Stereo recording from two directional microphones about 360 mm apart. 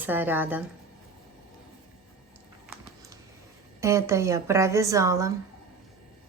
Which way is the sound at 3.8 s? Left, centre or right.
Centre.